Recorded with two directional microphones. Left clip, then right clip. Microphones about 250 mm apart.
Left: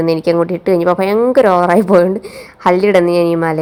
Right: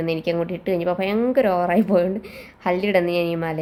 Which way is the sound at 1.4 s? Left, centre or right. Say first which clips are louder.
Left 9 dB; centre.